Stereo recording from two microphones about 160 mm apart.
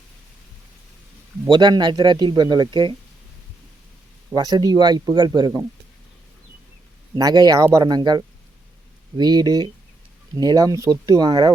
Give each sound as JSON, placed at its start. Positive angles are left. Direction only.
{"t": 1.5, "sound": "speech", "side_deg": -30}
{"t": 4.4, "sound": "speech", "side_deg": -25}
{"t": 7.2, "sound": "speech", "side_deg": -25}